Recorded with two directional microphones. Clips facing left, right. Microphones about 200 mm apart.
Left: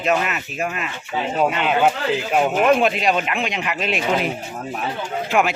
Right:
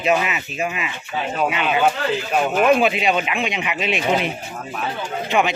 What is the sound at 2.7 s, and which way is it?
Speech, 5° right (ahead or behind).